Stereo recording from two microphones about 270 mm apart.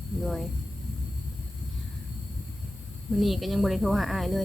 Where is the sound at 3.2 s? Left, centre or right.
Centre.